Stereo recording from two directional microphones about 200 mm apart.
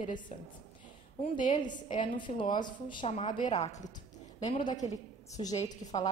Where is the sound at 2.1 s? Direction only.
25° left (ahead or behind).